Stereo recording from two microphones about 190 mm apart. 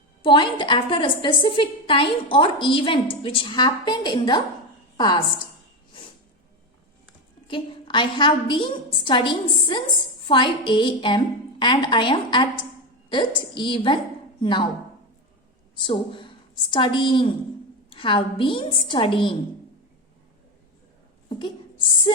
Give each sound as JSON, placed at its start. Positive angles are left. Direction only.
{"t": 0.2, "sound": "a woman's voice", "side_deg": 25}
{"t": 7.4, "sound": "a woman's voice", "side_deg": 25}
{"t": 15.7, "sound": "a woman's voice", "side_deg": 25}
{"t": 21.2, "sound": "a sound", "side_deg": 25}